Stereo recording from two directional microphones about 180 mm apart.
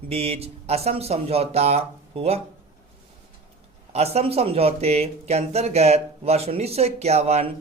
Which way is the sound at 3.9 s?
35° right (ahead or behind).